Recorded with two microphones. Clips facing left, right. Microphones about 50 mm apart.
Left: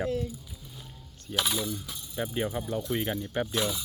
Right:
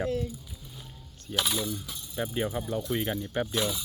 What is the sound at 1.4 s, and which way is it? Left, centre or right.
Coin, centre.